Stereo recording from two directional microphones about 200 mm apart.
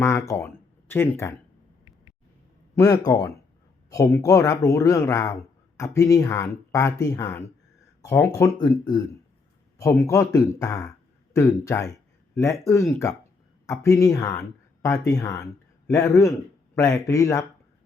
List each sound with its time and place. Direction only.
0.0 s speech: 15° left (ahead or behind)
2.7 s speech: 15° left (ahead or behind)
9.7 s speech: 15° left (ahead or behind)